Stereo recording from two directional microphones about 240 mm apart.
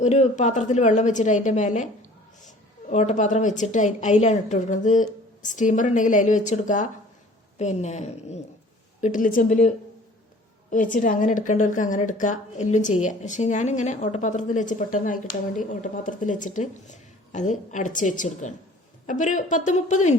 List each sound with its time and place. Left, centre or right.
0.0 s a woman's voice: left
2.9 s a woman's voice: left